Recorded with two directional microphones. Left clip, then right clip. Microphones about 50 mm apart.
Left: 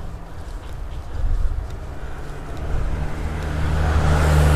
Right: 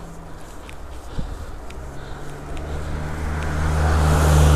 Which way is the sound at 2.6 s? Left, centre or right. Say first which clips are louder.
Even; right.